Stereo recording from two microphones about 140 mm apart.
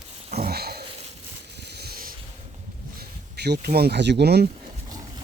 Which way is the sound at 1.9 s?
90° right.